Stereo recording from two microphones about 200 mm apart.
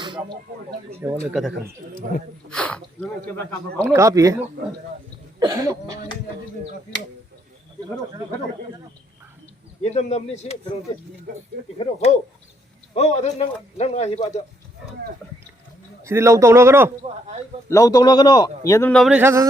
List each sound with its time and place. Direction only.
0.0 s a sound: 20° right (ahead or behind)
0.9 s speech: 15° right (ahead or behind)
1.3 s speech: centre (ahead or behind)
3.8 s speech: 15° right (ahead or behind)
5.4 s speech: 15° right (ahead or behind)
9.8 s speech: 35° left (ahead or behind)
11.8 s a man's voice: 35° left (ahead or behind)
16.0 s speech: 15° right (ahead or behind)
17.7 s a man's voice: 15° left (ahead or behind)
19.1 s speech: 15° right (ahead or behind)